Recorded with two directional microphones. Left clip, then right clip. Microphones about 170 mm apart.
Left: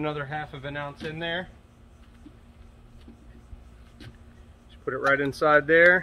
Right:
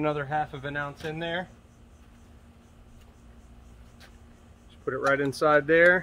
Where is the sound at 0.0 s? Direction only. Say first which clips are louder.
Right 3 dB; 40° right (ahead or behind).